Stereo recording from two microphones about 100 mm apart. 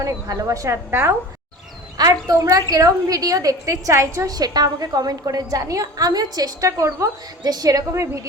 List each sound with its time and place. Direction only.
0.0 s a woman's voice: 35° right (ahead or behind)
2.0 s a woman's voice: 40° right (ahead or behind)